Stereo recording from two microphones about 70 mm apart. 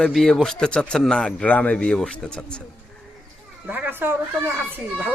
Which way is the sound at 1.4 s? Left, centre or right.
Left.